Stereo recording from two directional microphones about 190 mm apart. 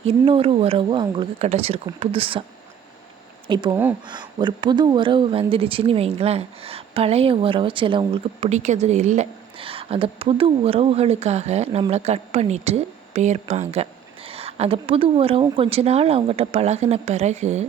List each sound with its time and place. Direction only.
0.1 s speech: 30° right (ahead or behind)
3.4 s a woman's voice: 25° right (ahead or behind)